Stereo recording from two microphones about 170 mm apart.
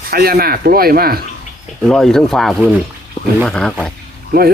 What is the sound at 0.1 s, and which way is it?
Speech, 60° right (ahead or behind).